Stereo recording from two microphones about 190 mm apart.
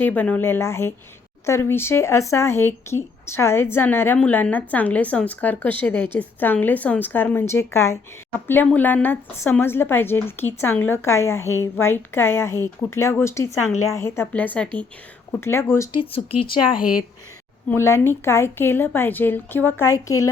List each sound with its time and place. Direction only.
0.0 s a woman's voice: 10° left (ahead or behind)
15.9 s speech: 30° left (ahead or behind)
17.7 s a woman's voice: 15° left (ahead or behind)